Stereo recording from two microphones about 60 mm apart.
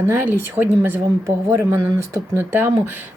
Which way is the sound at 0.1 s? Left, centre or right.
Right.